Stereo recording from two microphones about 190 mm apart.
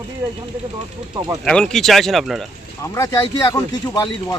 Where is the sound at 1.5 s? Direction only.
5° left (ahead or behind).